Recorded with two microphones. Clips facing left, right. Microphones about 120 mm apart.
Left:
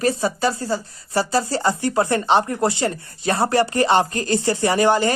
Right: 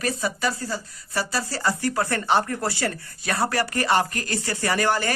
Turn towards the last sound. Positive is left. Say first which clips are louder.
# left 6 dB
turn(degrees=20)  # may be behind; listen again after turning